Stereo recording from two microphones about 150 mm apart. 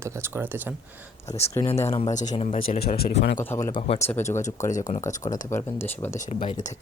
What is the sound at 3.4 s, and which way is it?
Speech, 15° left (ahead or behind).